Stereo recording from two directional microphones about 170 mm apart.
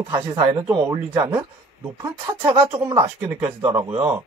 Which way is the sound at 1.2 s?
15° right (ahead or behind).